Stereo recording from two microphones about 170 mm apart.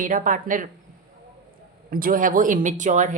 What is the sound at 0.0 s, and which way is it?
Speech, 50° right (ahead or behind).